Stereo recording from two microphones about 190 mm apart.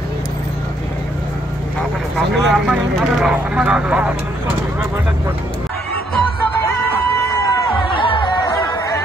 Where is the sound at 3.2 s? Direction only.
5° right (ahead or behind).